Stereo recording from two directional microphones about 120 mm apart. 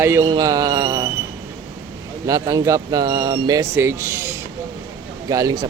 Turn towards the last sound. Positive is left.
turn(degrees=-30)  # may be behind; listen again after turning